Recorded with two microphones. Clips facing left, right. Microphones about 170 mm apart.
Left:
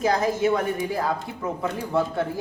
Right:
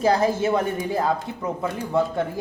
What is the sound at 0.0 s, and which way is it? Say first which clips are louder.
Speech: right 2 dB; 30° right (ahead or behind).